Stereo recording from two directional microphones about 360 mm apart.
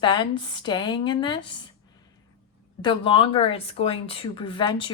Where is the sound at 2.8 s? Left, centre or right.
Centre.